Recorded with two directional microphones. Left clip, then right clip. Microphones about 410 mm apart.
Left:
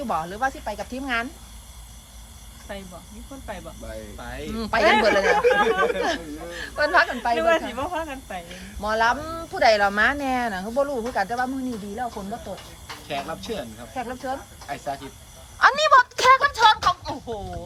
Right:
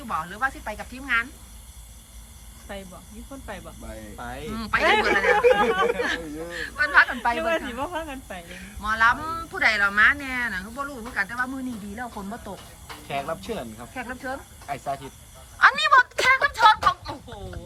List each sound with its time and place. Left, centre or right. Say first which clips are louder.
0.1 s speech: left 1 dB; centre
2.7 s speech: left 1 dB; centre
4.5 s speech: left 2 dB; centre
13.1 s speech: even; centre
13.9 s speech: left 3 dB; centre
15.5 s a sound: left 1 dB; centre